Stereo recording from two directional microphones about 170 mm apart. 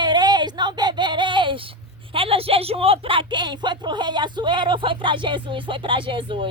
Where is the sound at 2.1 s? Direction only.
35° right (ahead or behind).